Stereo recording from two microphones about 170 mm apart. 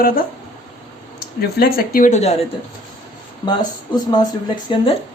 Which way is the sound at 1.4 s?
60° left (ahead or behind).